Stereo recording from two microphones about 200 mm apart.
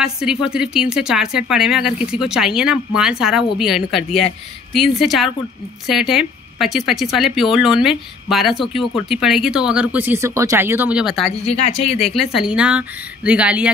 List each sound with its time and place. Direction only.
0.0 s a woman's voice: 5° right (ahead or behind)
11.4 s speech: 30° left (ahead or behind)
12.1 s a woman's voice: centre (ahead or behind)